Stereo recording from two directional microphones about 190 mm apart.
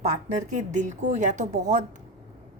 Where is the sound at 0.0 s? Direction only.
40° right (ahead or behind).